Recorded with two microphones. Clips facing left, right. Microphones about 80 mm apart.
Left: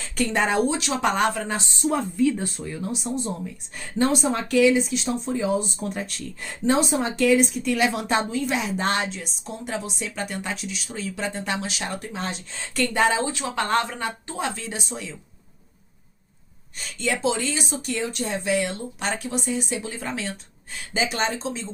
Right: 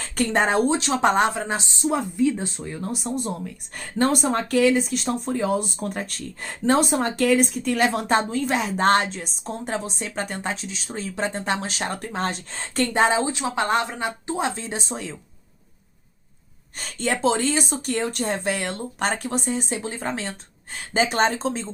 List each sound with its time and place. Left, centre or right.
0.0 s speech: right
2.6 s speech: right
16.7 s speech: right